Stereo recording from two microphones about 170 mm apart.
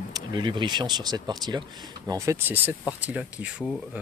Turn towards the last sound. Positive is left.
turn(degrees=-10)  # may be behind; listen again after turning